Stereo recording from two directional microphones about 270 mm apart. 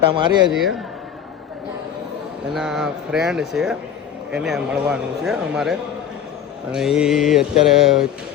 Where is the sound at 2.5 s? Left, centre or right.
Centre.